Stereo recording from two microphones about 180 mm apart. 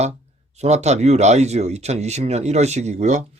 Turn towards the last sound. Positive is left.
turn(degrees=-40)  # may be behind; listen again after turning